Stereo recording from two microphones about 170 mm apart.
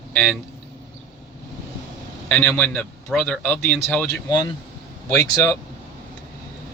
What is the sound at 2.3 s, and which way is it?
Speech, 15° left (ahead or behind).